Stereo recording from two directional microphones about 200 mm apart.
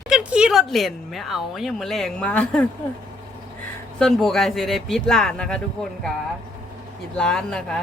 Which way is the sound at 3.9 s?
Centre (ahead or behind).